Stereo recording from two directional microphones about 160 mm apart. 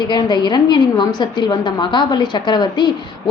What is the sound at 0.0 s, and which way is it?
A woman's voice, 25° left (ahead or behind).